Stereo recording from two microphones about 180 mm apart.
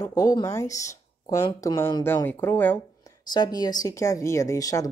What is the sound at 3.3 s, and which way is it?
Speech, 25° left (ahead or behind).